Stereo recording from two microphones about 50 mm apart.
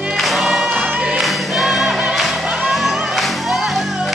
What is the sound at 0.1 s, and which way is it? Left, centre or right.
Music, centre.